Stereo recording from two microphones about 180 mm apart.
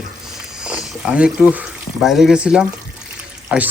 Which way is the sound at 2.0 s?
Centre (ahead or behind).